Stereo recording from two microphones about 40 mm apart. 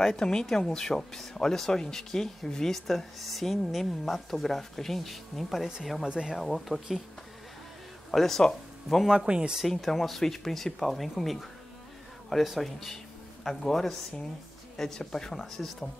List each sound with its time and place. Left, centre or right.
0.0 s speech: centre
2.7 s a woman's voice: centre
6.0 s a man's voice: right
6.3 s a woman's voice: centre
8.1 s speech: centre
9.0 s a man's voice: right
9.7 s a woman's voice: centre
12.5 s speech: centre